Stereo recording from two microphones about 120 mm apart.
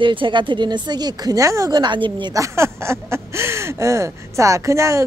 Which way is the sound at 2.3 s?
25° right (ahead or behind).